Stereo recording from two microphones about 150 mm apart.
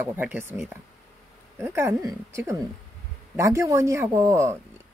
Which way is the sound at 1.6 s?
15° right (ahead or behind).